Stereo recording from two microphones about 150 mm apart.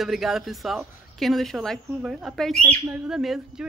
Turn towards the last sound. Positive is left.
turn(degrees=-5)  # may be behind; listen again after turning